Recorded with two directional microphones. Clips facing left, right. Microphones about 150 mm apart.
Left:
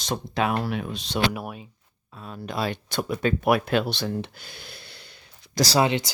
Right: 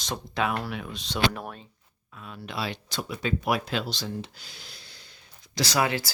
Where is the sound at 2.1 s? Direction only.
40° left (ahead or behind); by 5.6 s 65° left (ahead or behind).